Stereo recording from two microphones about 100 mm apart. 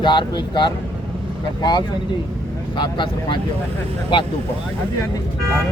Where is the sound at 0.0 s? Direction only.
50° left (ahead or behind).